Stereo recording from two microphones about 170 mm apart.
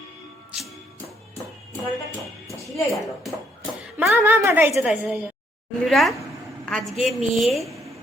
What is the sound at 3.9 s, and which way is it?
A woman's voice, 10° right (ahead or behind).